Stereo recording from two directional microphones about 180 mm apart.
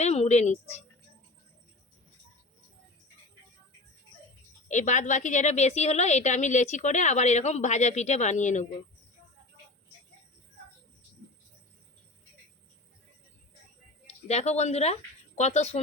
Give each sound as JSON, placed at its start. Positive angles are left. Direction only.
{"t": 0.0, "sound": "a sound", "side_deg": 40}
{"t": 4.7, "sound": "a woman's voice", "side_deg": 40}
{"t": 14.3, "sound": "a woman's voice", "side_deg": 40}